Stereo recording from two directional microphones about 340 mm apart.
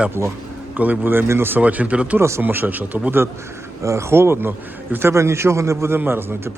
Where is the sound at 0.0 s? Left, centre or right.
Centre.